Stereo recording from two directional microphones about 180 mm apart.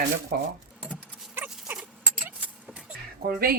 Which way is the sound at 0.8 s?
10° right (ahead or behind).